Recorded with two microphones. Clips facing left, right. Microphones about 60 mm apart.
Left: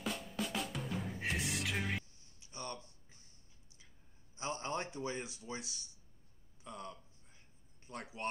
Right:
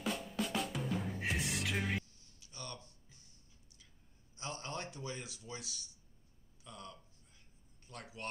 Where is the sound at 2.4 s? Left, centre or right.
Left.